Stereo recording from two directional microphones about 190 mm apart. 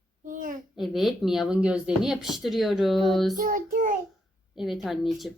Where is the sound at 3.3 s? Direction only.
45° right (ahead or behind).